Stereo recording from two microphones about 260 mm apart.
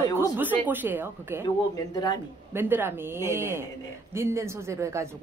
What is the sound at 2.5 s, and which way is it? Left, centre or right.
A woman's voice, centre.